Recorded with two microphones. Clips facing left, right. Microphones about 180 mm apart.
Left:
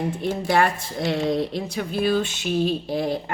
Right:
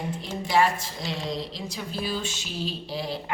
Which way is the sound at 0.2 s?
55° left (ahead or behind).